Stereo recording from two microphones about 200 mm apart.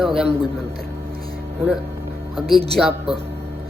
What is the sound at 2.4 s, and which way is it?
Speech, centre (ahead or behind).